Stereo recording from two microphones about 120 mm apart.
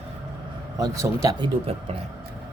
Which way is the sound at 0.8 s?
30° right (ahead or behind).